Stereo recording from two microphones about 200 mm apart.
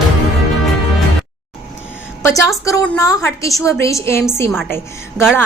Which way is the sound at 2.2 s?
15° left (ahead or behind).